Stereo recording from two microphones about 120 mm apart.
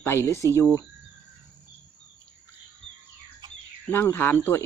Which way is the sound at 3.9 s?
20° left (ahead or behind).